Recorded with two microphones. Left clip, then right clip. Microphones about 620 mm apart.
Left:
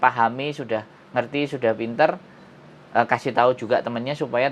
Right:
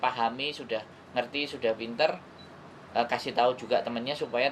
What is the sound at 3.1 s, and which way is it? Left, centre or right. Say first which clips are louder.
Speech: left 6 dB; left.